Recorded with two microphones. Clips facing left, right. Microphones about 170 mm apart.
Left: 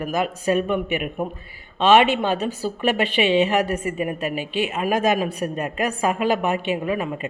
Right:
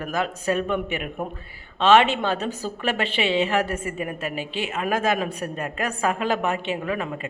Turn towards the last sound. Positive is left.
turn(degrees=15)  # may be behind; listen again after turning